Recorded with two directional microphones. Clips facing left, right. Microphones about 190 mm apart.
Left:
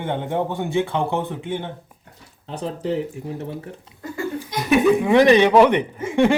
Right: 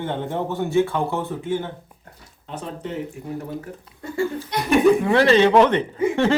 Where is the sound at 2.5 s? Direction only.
30° left (ahead or behind).